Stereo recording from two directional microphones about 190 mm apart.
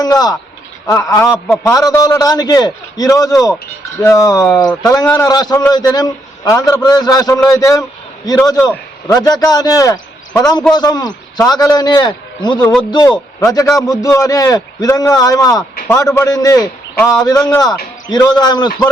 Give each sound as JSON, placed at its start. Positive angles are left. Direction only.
{"t": 0.0, "sound": "a man's voice", "side_deg": 20}
{"t": 1.7, "sound": "a man's voice", "side_deg": 20}